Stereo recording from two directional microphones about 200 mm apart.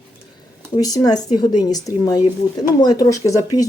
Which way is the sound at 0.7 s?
20° left (ahead or behind).